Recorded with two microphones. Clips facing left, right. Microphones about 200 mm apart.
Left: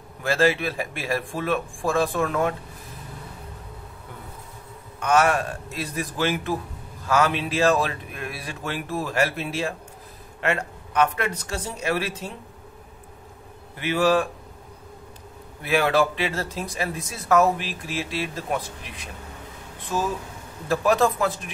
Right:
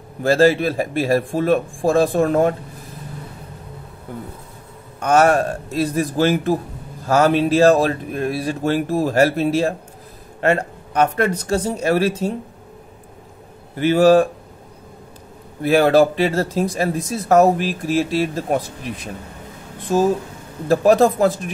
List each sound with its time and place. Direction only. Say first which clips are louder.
0.2 s speech: right 7 dB; 40° right (ahead or behind)
5.0 s speech: right 6 dB; 40° right (ahead or behind)
13.7 s speech: right 8 dB; 40° right (ahead or behind)
15.6 s speech: right 8 dB; 40° right (ahead or behind)